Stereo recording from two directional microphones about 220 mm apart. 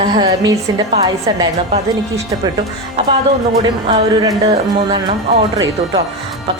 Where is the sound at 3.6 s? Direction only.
15° right (ahead or behind).